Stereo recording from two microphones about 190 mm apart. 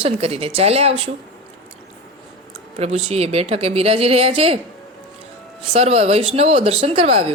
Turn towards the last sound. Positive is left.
turn(degrees=-30)  # may be behind; listen again after turning